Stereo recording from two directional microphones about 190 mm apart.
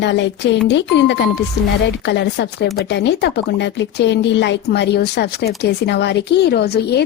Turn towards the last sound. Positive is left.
turn(degrees=60)  # may be behind; listen again after turning